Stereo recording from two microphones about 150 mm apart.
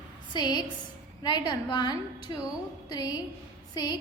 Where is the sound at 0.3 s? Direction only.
30° left (ahead or behind).